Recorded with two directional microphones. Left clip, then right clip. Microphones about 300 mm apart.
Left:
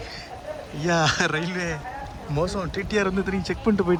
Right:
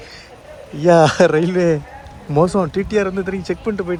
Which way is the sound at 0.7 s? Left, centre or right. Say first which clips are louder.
Right 11 dB; centre.